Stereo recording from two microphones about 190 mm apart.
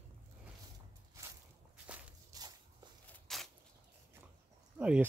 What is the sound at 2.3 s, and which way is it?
Walk, 20° right (ahead or behind).